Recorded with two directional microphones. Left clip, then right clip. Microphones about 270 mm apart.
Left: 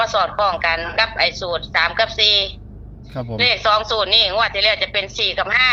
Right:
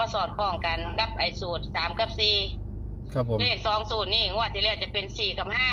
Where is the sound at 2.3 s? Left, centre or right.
Left.